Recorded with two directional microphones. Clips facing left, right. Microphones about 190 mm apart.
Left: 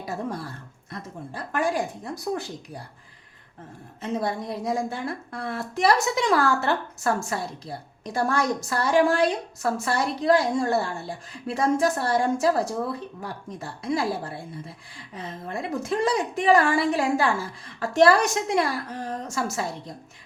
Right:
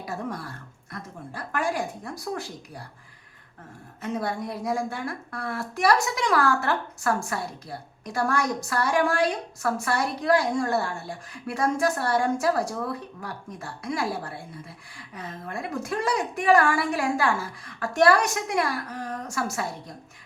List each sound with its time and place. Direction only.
1.3 s a woman's voice: 25° left (ahead or behind)
4.0 s a woman's voice: 25° left (ahead or behind)